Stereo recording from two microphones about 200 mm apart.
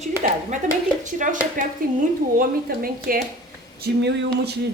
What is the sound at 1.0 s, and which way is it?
Speech, 40° right (ahead or behind).